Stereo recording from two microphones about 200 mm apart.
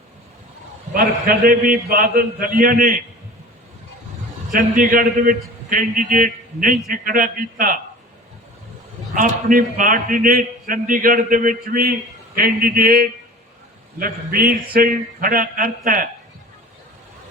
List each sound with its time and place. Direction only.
0.9 s a man's voice: 45° right (ahead or behind)
4.5 s a man's voice: 45° right (ahead or behind)
9.1 s a man's voice: 40° right (ahead or behind)